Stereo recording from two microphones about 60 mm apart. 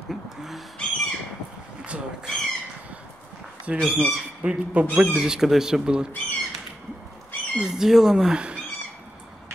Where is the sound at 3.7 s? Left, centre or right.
Right.